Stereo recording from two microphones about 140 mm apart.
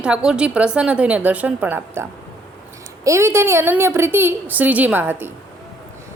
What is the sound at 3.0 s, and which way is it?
A woman's voice, 20° right (ahead or behind).